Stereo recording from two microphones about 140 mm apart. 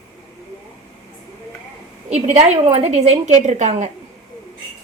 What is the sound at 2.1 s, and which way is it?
Speech, 50° right (ahead or behind).